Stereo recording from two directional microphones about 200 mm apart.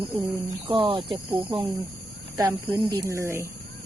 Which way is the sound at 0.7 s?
25° right (ahead or behind).